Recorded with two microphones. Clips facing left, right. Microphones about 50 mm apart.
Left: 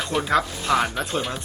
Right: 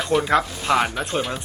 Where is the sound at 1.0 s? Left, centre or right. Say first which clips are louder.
Right 1 dB; centre.